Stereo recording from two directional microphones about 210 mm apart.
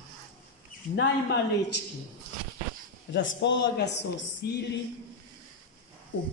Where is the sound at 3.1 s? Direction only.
55° left (ahead or behind).